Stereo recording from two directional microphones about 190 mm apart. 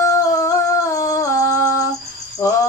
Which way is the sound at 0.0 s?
15° left (ahead or behind).